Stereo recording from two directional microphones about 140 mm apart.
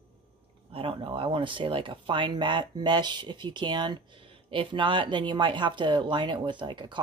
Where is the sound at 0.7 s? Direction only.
40° right (ahead or behind).